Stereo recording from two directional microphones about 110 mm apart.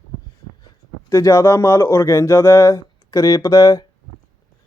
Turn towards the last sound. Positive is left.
turn(degrees=35)  # may be behind; listen again after turning